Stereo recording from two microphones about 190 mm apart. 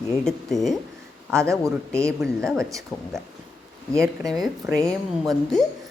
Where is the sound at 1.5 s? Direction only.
15° right (ahead or behind).